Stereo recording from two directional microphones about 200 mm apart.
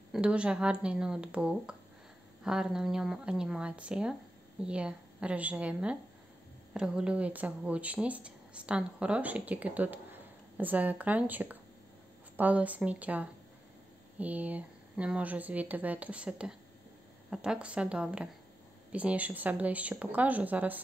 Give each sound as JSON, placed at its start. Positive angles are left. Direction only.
{"t": 0.1, "sound": "speech", "side_deg": -5}